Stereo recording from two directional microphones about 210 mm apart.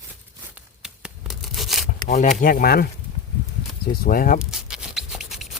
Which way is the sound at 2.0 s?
35° left (ahead or behind).